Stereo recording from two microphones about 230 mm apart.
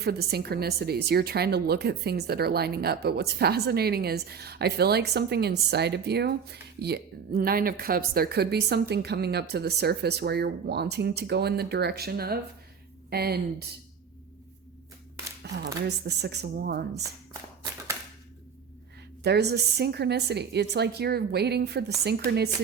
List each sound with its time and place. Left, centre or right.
0.0 s speech: right
15.6 s speech: right
19.2 s speech: right